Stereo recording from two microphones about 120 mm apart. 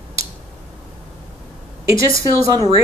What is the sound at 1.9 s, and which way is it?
Speech, 25° right (ahead or behind).